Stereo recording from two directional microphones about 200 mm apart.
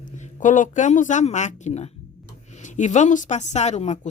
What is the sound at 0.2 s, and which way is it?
A woman's voice, 40° left (ahead or behind).